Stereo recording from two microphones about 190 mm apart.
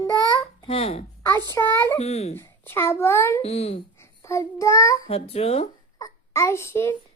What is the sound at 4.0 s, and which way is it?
Child singing, 15° left (ahead or behind).